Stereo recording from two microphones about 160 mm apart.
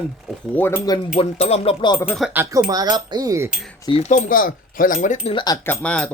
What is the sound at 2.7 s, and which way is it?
Speech, 25° right (ahead or behind).